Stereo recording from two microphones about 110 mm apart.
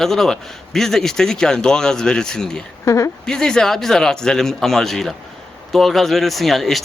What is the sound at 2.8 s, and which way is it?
Speech, 30° left (ahead or behind).